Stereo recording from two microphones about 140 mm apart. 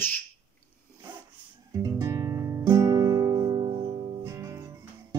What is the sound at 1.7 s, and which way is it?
Music, 25° right (ahead or behind).